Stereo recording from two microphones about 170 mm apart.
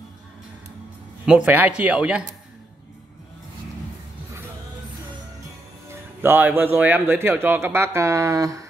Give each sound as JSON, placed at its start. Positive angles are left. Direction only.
{"t": 1.2, "sound": "a man's voice", "side_deg": -5}
{"t": 5.9, "sound": "a man's voice", "side_deg": -10}